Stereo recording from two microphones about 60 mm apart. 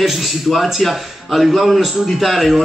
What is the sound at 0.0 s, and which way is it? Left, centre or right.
A man's voice, centre.